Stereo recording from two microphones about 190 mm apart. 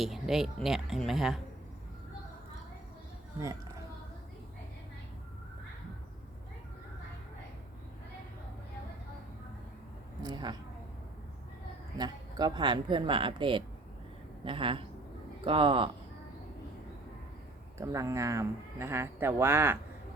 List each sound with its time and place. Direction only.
0.0 s speech: centre (ahead or behind)
10.2 s speech: 20° right (ahead or behind)
11.9 s speech: 20° right (ahead or behind)
17.7 s speech: 15° right (ahead or behind)